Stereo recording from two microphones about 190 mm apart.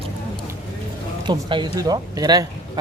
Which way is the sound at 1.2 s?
25° right (ahead or behind).